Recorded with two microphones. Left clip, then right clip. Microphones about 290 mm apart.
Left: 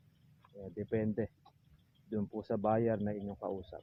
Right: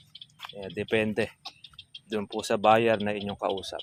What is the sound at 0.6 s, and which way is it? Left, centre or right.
Speech, centre.